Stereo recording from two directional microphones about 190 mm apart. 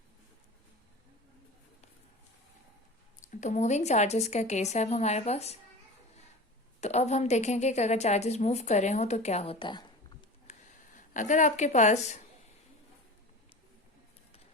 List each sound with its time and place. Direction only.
3.2 s a woman's voice: 40° left (ahead or behind)
6.8 s a woman's voice: 35° left (ahead or behind)
10.5 s a sound: 35° left (ahead or behind)
10.9 s a woman's voice: 40° left (ahead or behind)